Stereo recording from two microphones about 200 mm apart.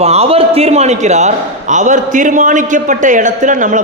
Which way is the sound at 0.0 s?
30° right (ahead or behind).